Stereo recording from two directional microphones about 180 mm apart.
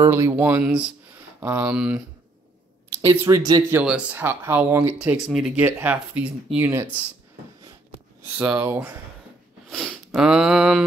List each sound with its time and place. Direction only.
0.0 s speech: 15° right (ahead or behind)
3.0 s speech: 15° right (ahead or behind)
3.7 s speech: 5° right (ahead or behind)
8.4 s speech: 10° right (ahead or behind)
9.7 s speech: centre (ahead or behind)